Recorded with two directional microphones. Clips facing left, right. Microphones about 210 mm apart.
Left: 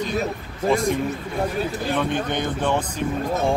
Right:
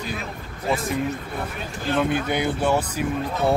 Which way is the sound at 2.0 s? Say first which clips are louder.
Right 4 dB; 10° right (ahead or behind).